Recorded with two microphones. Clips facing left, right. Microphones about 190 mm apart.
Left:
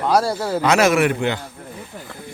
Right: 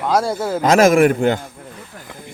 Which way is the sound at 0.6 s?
45° right (ahead or behind).